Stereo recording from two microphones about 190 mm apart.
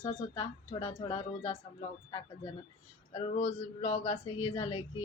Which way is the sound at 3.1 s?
35° left (ahead or behind).